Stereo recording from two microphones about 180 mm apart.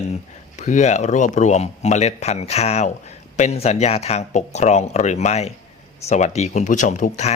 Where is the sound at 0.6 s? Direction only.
40° left (ahead or behind).